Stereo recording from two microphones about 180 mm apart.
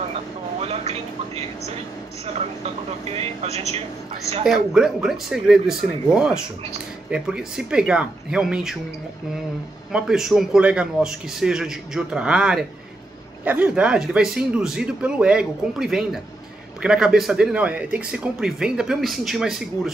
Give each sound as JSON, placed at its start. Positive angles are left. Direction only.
{"t": 0.6, "sound": "a woman's voice", "side_deg": -35}
{"t": 3.2, "sound": "speech", "side_deg": -35}
{"t": 4.5, "sound": "speech", "side_deg": -5}
{"t": 9.9, "sound": "speech", "side_deg": -5}